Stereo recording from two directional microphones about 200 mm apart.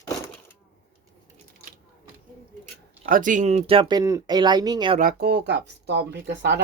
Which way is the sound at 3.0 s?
40° right (ahead or behind).